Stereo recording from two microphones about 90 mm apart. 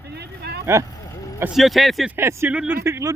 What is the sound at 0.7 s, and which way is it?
Speech, 35° right (ahead or behind).